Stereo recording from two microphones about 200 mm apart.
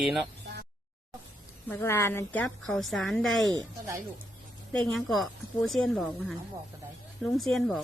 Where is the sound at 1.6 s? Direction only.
10° left (ahead or behind).